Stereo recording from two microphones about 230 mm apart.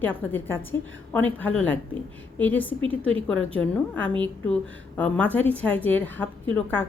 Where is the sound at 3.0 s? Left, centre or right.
Right.